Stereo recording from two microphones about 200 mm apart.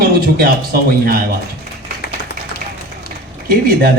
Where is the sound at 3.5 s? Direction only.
50° right (ahead or behind).